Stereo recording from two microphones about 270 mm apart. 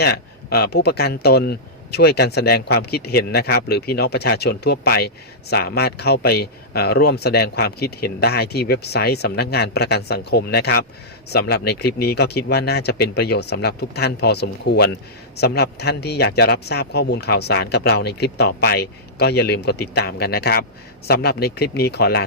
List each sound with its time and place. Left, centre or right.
0.0 s speech: left